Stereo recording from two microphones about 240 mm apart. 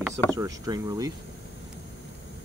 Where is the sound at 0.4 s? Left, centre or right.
Centre.